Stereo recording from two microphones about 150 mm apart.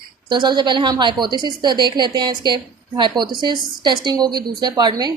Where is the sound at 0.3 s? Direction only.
30° right (ahead or behind).